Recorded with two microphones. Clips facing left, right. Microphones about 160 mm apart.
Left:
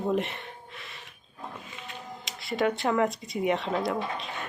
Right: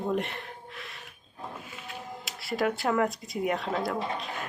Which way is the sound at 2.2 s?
Centre (ahead or behind).